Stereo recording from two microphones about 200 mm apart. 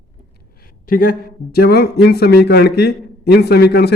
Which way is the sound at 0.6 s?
45° left (ahead or behind).